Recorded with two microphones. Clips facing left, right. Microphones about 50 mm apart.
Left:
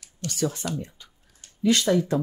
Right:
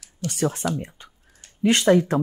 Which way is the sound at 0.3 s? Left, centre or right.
Right.